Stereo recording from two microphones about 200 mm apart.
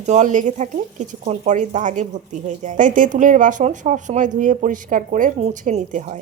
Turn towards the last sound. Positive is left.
turn(degrees=-35)  # may be behind; listen again after turning